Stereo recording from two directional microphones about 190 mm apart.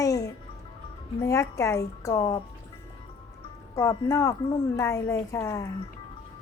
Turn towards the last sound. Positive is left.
turn(degrees=15)  # may be behind; listen again after turning